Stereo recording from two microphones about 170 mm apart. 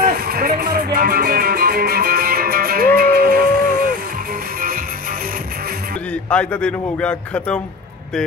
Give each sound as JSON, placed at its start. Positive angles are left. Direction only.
{"t": 0.0, "sound": "music", "side_deg": -60}
{"t": 6.3, "sound": "a man's voice", "side_deg": 5}